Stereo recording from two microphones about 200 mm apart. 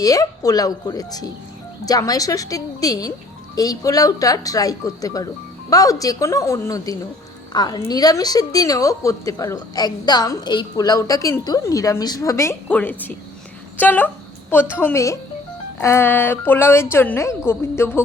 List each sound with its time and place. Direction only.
0.0 s a woman's voice: 15° left (ahead or behind)